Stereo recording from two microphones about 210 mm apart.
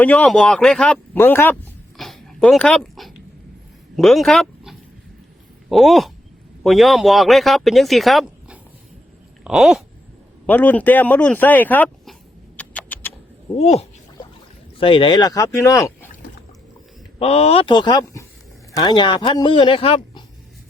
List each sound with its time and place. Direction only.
0.0 s speech: 5° left (ahead or behind)
2.0 s dog: centre (ahead or behind)
3.9 s speech: centre (ahead or behind)
9.4 s a sound: 5° right (ahead or behind)
10.4 s speech: 10° left (ahead or behind)
12.5 s rodents: 5° left (ahead or behind)
13.6 s a sound: 30° left (ahead or behind)
14.8 s speech: 25° left (ahead or behind)
17.2 s speech: 30° left (ahead or behind)